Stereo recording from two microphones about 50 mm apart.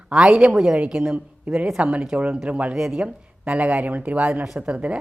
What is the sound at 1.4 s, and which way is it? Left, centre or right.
A woman's voice, right.